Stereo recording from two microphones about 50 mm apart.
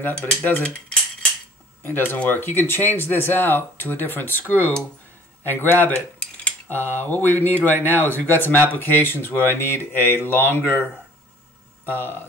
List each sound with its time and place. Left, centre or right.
0.2 s speech: left
1.9 s speech: left